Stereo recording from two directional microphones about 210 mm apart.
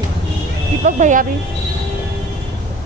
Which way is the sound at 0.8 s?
35° right (ahead or behind).